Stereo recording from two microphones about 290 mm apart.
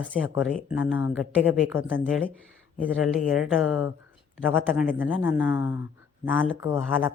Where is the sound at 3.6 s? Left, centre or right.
Left.